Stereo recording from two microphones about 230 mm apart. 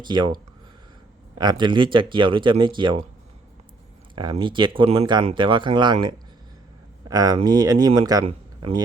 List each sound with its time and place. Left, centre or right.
0.0 s speech: centre
1.4 s speech: centre
4.1 s speech: centre